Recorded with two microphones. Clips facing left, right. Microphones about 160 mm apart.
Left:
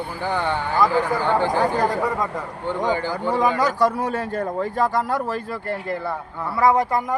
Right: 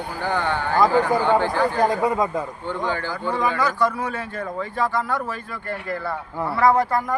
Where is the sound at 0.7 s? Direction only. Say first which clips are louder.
Right 2 dB; 15° right (ahead or behind).